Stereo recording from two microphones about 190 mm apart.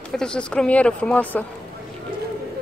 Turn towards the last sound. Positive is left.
turn(degrees=10)  # may be behind; listen again after turning